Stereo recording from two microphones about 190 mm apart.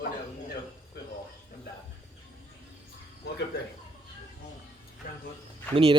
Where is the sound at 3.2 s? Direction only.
60° left (ahead or behind).